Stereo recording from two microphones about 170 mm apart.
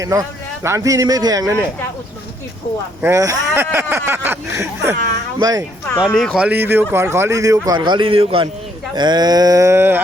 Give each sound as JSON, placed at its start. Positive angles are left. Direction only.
{"t": 0.0, "sound": "a man's voice", "side_deg": -20}
{"t": 3.0, "sound": "a man's voice", "side_deg": -15}
{"t": 6.0, "sound": "a man's voice", "side_deg": 5}